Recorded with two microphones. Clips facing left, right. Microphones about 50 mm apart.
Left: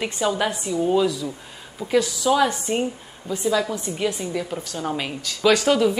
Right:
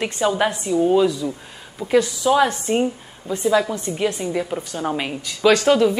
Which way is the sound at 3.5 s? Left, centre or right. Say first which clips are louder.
Right 4 dB; centre.